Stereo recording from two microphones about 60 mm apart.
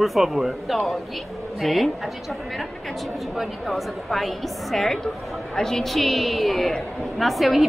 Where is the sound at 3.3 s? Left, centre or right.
Centre.